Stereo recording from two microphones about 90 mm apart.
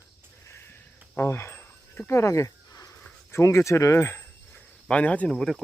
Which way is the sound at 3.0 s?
30° left (ahead or behind).